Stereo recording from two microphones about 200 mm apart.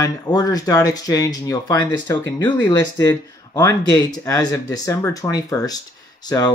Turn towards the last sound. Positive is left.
turn(degrees=20)  # may be behind; listen again after turning